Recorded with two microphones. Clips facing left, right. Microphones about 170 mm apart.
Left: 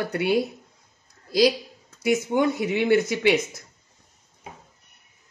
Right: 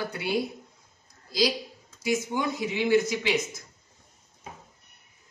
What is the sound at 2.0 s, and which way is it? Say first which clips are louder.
Speech: left 6 dB; 60° left (ahead or behind).